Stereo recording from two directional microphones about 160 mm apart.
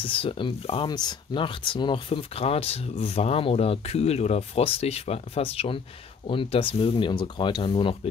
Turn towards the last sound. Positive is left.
turn(degrees=30)  # may be behind; listen again after turning